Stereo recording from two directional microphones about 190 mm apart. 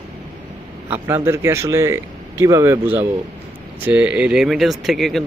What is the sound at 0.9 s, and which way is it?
Speech, 15° right (ahead or behind).